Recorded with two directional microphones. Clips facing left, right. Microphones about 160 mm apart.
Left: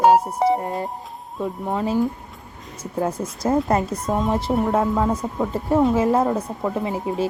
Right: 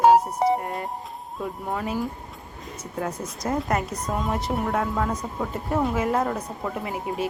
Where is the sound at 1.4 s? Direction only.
25° left (ahead or behind).